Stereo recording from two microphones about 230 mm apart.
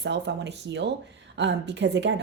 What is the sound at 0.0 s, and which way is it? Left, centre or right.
Speech, right.